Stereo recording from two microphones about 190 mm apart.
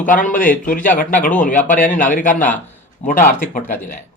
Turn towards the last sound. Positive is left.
turn(degrees=45)  # may be behind; listen again after turning